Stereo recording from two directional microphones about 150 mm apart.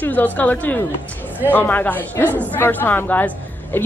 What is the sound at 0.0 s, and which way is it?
A woman's voice, 10° left (ahead or behind).